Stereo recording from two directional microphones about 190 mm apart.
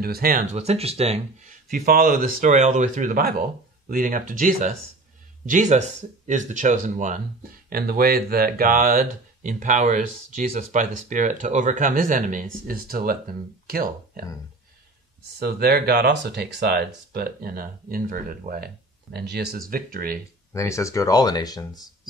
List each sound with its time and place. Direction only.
0.0 s speech: 50° right (ahead or behind); by 1.2 s 35° right (ahead or behind)
1.7 s speech: 45° right (ahead or behind)
7.7 s speech: 50° right (ahead or behind)
15.3 s speech: 55° right (ahead or behind)
20.5 s speech: 15° left (ahead or behind)